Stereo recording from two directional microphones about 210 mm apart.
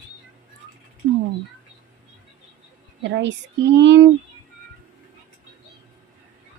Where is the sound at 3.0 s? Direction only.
55° right (ahead or behind).